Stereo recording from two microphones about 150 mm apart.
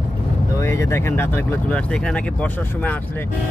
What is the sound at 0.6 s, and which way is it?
Speech, 20° left (ahead or behind).